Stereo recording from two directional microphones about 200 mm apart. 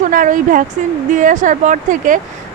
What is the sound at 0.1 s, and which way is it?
A woman's voice, 40° right (ahead or behind).